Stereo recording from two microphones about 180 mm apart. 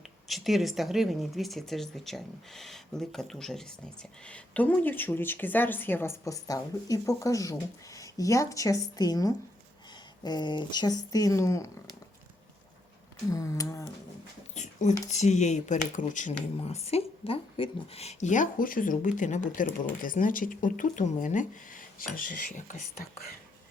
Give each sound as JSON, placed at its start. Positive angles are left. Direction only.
{"t": 0.3, "sound": "speech", "side_deg": 0}
{"t": 13.3, "sound": "a sound", "side_deg": 20}
{"t": 14.5, "sound": "speech", "side_deg": 40}